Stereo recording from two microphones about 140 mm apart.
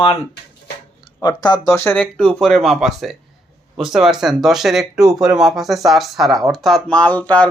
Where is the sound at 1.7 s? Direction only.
15° left (ahead or behind).